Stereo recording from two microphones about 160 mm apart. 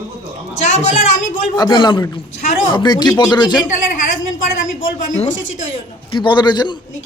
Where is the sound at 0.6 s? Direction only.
45° left (ahead or behind).